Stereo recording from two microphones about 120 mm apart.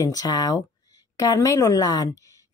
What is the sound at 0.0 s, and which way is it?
A woman's voice, 30° left (ahead or behind).